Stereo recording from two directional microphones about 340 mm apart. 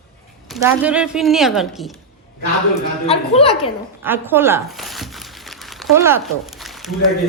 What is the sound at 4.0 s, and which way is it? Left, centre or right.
Crumpling, centre.